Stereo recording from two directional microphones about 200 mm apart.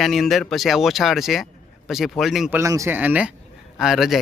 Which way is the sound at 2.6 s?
15° right (ahead or behind).